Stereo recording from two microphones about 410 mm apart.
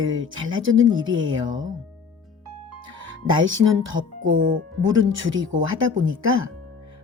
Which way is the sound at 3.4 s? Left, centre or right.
Right.